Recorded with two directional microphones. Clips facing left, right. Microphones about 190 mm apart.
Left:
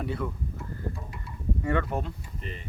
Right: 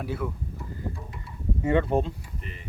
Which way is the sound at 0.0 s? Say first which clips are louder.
Right 1 dB; centre (ahead or behind).